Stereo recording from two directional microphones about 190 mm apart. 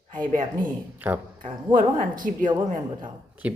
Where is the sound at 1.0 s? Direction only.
10° right (ahead or behind).